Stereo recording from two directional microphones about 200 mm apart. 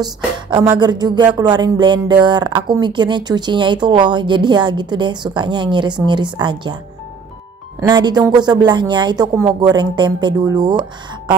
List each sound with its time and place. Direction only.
0.0 s speech: 25° right (ahead or behind)
7.9 s speech: 20° right (ahead or behind)